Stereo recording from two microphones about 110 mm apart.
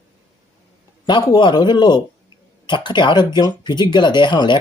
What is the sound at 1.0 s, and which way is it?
Speech, 45° left (ahead or behind).